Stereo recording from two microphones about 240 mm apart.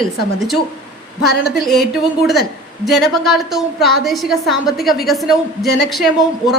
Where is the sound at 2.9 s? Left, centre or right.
Centre.